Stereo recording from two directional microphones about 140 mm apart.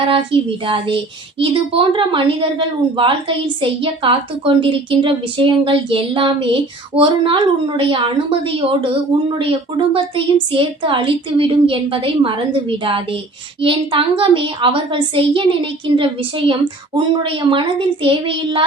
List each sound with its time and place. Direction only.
0.1 s a woman's voice: 40° right (ahead or behind)